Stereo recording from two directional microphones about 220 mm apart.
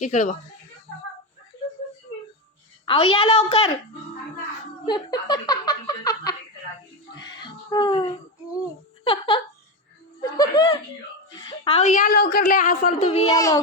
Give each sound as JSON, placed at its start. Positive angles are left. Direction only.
{"t": 0.0, "sound": "a woman's voice", "side_deg": 35}
{"t": 2.8, "sound": "speech", "side_deg": 25}
{"t": 4.9, "sound": "speech", "side_deg": 20}
{"t": 7.2, "sound": "a sound", "side_deg": 20}
{"t": 9.0, "sound": "a sound", "side_deg": 20}
{"t": 11.3, "sound": "a woman's voice", "side_deg": 20}
{"t": 13.3, "sound": "child singing", "side_deg": 15}